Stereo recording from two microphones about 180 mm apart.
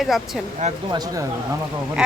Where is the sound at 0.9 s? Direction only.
20° right (ahead or behind).